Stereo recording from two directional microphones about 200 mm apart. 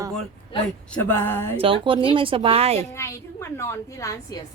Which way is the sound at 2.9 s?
15° left (ahead or behind).